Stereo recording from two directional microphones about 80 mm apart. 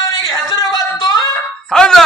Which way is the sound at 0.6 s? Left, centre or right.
Left.